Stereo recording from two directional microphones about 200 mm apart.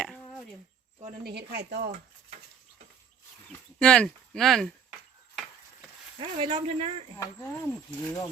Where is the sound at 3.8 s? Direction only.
5° left (ahead or behind).